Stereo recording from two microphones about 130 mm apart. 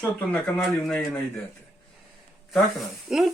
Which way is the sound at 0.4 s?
10° left (ahead or behind).